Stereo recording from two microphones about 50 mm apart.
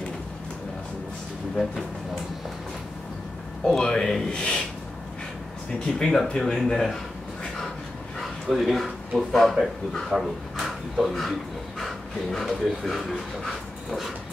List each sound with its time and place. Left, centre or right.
3.6 s speech: centre
5.7 s speech: centre
8.2 s speech: centre